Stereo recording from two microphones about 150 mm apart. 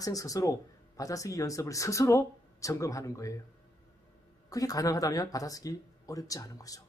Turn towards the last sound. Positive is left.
turn(degrees=25)  # may be behind; listen again after turning